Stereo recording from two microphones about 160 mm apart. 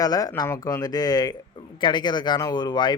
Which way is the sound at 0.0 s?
25° left (ahead or behind).